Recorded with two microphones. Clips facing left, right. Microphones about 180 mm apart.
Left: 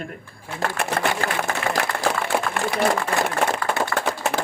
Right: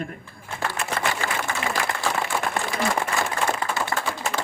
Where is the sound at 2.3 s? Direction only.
60° left (ahead or behind).